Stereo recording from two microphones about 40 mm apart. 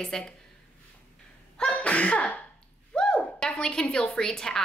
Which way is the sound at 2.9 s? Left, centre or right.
Left.